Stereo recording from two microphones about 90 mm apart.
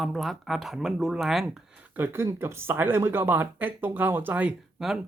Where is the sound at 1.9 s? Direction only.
25° right (ahead or behind).